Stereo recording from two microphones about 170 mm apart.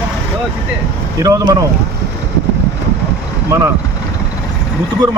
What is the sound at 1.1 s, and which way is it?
Speech, 20° right (ahead or behind).